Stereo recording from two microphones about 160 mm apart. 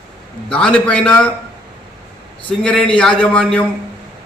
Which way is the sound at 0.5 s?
5° left (ahead or behind).